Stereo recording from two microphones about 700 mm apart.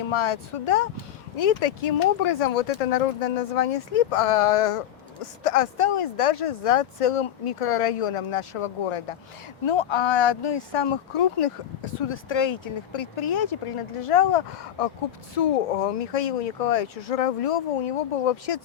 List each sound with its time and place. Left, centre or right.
0.1 s speech: left
1.4 s speech: left